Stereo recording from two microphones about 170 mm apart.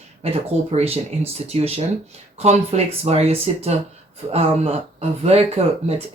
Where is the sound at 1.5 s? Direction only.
35° right (ahead or behind).